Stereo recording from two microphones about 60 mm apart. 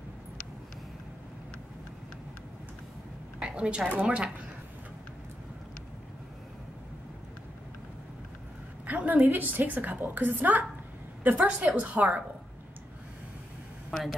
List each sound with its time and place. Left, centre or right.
3.3 s a woman's voice: centre
8.8 s a woman's voice: right
11.6 s a woman's voice: right
13.9 s speech: centre